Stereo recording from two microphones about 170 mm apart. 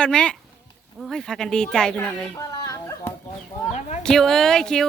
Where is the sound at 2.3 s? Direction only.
20° left (ahead or behind).